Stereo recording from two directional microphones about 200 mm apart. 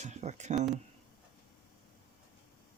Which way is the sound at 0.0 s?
35° right (ahead or behind).